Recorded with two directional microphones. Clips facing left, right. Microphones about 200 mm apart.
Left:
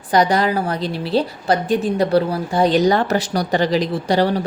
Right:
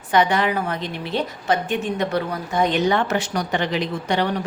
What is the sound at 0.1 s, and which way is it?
A woman's voice, 35° left (ahead or behind).